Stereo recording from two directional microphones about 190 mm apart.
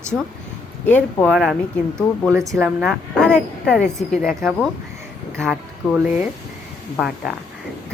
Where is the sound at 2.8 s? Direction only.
5° left (ahead or behind).